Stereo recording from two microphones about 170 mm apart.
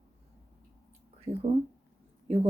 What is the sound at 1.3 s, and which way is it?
Speech, 15° right (ahead or behind).